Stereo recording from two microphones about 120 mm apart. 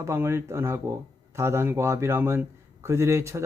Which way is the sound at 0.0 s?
20° right (ahead or behind).